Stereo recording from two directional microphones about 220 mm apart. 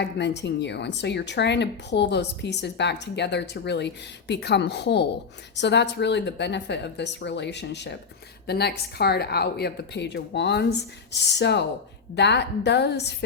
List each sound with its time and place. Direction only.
0.0 s speech: 50° left (ahead or behind)